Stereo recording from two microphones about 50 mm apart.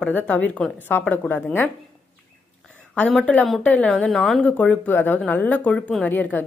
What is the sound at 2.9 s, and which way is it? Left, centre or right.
Speech, left.